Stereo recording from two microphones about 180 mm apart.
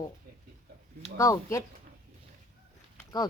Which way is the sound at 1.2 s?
15° left (ahead or behind).